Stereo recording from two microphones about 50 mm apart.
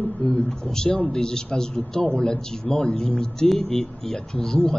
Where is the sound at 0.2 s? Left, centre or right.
Centre.